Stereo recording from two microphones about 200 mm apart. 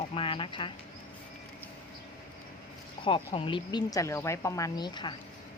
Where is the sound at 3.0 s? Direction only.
25° left (ahead or behind).